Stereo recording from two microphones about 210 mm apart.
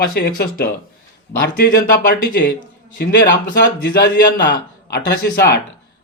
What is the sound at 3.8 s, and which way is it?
Speech, 50° left (ahead or behind).